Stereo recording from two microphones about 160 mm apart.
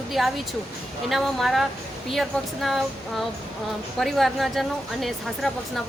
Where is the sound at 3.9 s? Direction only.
Centre (ahead or behind).